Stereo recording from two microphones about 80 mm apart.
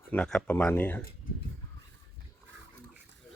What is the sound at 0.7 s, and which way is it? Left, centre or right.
Speech, left.